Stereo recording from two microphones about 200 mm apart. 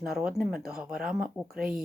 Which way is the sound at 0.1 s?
Centre (ahead or behind).